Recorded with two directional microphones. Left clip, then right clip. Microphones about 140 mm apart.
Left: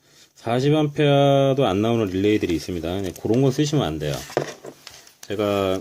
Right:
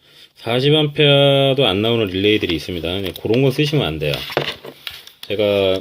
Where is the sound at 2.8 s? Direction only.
40° left (ahead or behind).